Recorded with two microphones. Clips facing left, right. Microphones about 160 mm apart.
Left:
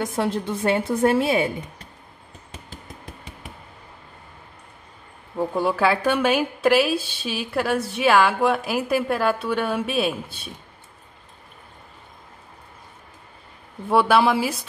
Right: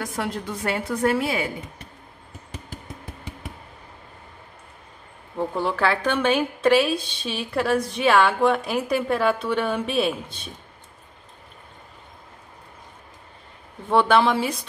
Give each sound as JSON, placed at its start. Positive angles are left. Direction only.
{"t": 0.0, "sound": "a woman's voice", "side_deg": 25}
{"t": 5.5, "sound": "a woman's voice", "side_deg": 10}
{"t": 13.8, "sound": "speech", "side_deg": 10}